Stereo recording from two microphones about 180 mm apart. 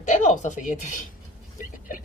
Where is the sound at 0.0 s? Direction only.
40° left (ahead or behind).